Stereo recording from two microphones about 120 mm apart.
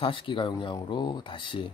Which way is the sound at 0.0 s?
45° left (ahead or behind).